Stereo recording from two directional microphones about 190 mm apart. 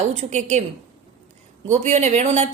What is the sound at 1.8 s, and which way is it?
Speech, 35° right (ahead or behind).